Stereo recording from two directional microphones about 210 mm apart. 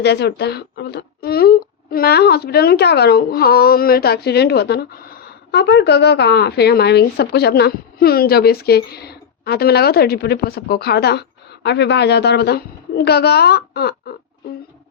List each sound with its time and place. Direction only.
0.0 s speech: 55° left (ahead or behind)